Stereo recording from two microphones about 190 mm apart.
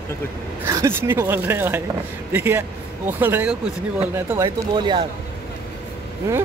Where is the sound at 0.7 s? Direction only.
15° right (ahead or behind).